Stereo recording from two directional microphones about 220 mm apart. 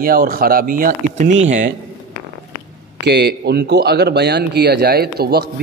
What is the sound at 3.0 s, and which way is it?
A man's voice, 50° right (ahead or behind).